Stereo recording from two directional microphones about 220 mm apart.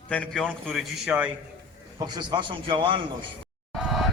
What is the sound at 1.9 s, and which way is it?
A man's voice, 20° right (ahead or behind).